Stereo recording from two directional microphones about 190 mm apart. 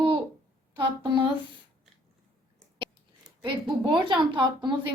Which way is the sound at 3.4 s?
25° right (ahead or behind).